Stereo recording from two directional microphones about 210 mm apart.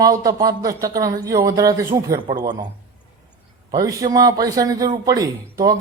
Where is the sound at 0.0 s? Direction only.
15° right (ahead or behind).